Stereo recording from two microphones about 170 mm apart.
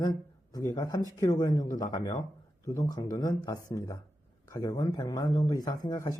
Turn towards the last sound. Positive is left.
turn(degrees=20)  # may be behind; listen again after turning